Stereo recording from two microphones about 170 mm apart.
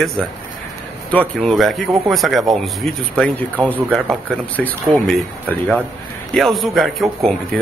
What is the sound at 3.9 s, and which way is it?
Speech, 5° left (ahead or behind).